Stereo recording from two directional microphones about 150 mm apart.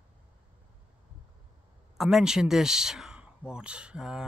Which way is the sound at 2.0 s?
5° right (ahead or behind).